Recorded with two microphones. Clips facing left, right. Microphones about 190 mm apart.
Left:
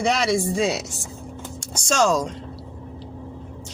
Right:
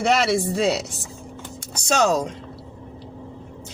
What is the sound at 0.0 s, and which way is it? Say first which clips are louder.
Speech: right 1 dB; 65° right (ahead or behind).